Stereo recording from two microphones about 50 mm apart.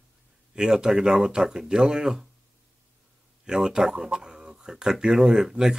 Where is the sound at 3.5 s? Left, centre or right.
Centre.